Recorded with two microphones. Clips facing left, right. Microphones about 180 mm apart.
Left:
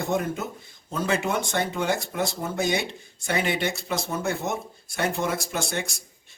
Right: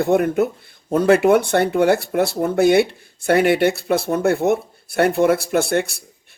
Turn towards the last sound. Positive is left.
turn(degrees=-60)  # may be behind; listen again after turning